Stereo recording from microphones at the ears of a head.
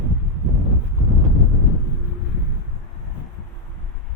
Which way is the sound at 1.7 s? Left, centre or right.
Left.